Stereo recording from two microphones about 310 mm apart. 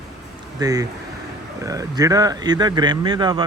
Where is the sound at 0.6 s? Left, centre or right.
Centre.